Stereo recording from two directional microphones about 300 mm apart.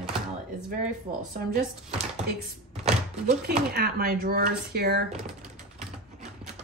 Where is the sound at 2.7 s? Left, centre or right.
Right.